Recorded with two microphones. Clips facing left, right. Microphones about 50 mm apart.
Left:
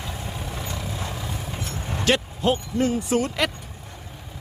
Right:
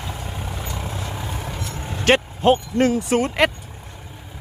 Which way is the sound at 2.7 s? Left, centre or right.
Right.